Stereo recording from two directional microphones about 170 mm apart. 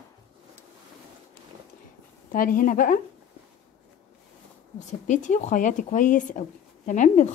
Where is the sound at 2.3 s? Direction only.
55° left (ahead or behind).